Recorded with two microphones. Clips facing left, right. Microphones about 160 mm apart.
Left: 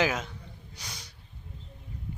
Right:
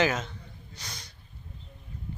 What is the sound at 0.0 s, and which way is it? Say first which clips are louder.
Speech: right 1 dB; 10° left (ahead or behind).